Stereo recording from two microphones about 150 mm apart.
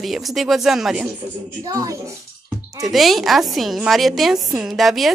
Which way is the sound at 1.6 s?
20° right (ahead or behind).